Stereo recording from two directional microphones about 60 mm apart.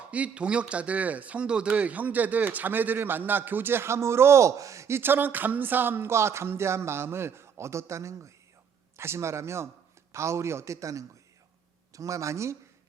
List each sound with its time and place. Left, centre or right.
0.1 s a man's voice: centre; by 12.5 s right